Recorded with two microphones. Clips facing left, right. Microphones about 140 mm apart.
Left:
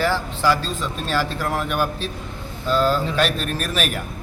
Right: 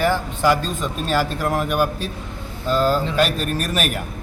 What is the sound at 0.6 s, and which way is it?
Speech, 45° right (ahead or behind).